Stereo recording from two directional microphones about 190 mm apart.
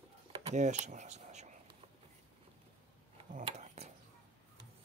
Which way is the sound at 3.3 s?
35° right (ahead or behind).